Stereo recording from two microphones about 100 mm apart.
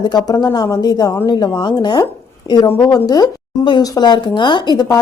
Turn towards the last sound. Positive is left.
turn(degrees=45)  # may be behind; listen again after turning